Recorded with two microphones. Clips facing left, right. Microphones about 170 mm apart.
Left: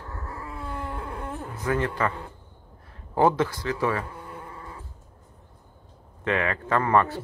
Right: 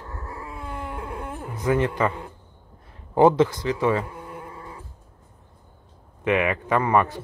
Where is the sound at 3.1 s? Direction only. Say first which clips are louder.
Right 5 dB; 20° right (ahead or behind).